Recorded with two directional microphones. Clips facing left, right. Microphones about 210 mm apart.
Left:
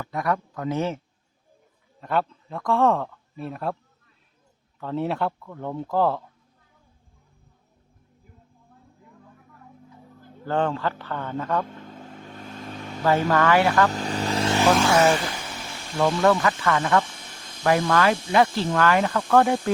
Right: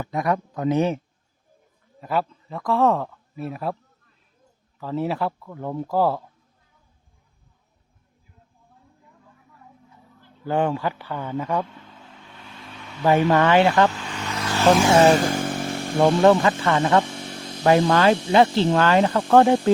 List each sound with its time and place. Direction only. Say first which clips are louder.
0.0 s a man's voice: right 3 dB; 20° right (ahead or behind)
2.0 s speech: even; 5° right (ahead or behind)
4.8 s speech: right 1 dB; centre (ahead or behind)
10.4 s a man's voice: right 2 dB; 15° right (ahead or behind)
11.9 s vehicle: left 7 dB; 45° left (ahead or behind)
13.0 s speech: right 3 dB; 20° right (ahead or behind)
13.9 s vehicle: left 6 dB; 40° left (ahead or behind)
14.8 s speech: right 4 dB; 30° right (ahead or behind)
15.1 s motorcycle: right 7 dB; 45° right (ahead or behind)
16.2 s speech: right 4 dB; 25° right (ahead or behind)
17.2 s a sound: right 11 dB; 45° right (ahead or behind)
17.6 s speech: right 3 dB; 25° right (ahead or behind)